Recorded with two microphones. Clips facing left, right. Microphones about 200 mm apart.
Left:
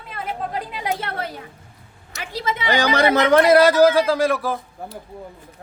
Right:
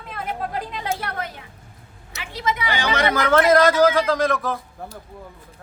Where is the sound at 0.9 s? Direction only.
30° left (ahead or behind); by 4.5 s 10° left (ahead or behind).